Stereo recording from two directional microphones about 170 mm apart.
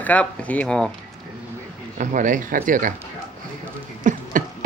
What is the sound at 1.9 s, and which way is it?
Speech, 50° right (ahead or behind).